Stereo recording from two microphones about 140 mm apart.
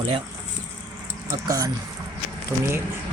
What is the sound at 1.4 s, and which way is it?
Speech, 25° right (ahead or behind).